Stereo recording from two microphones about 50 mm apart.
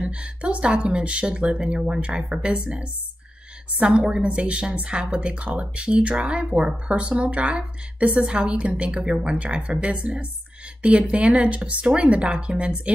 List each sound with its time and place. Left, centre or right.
0.0 s a woman's voice: right